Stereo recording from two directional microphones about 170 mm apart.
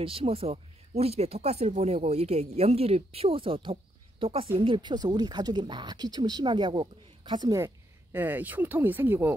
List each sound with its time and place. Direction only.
0.0 s a woman's voice: 35° right (ahead or behind); by 9.3 s 10° right (ahead or behind)